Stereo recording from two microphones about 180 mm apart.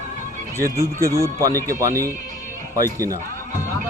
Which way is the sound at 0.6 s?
55° right (ahead or behind).